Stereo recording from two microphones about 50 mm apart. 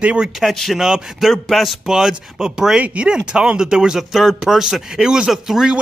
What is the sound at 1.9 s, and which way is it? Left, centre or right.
A man's voice, centre.